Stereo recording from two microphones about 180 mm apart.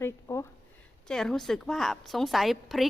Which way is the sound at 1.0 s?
5° left (ahead or behind).